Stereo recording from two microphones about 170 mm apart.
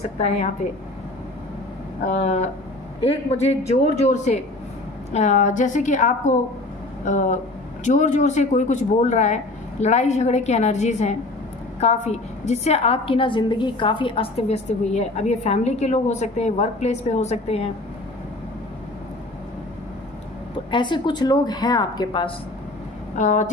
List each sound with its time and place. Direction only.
0.2 s a woman's voice: 40° left (ahead or behind)
2.0 s a woman's voice: 40° left (ahead or behind)
20.5 s speech: 30° left (ahead or behind)
23.1 s speech: 45° left (ahead or behind)